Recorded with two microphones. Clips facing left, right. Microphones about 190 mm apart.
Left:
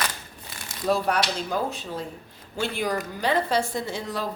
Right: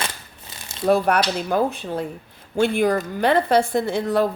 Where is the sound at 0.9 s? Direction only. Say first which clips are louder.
Right 5 dB; 60° right (ahead or behind).